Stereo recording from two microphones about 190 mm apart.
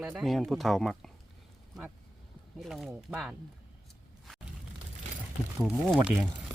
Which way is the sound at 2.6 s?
Centre (ahead or behind).